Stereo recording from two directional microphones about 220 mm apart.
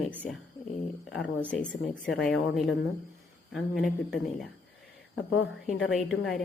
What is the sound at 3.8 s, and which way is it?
Speech, centre (ahead or behind).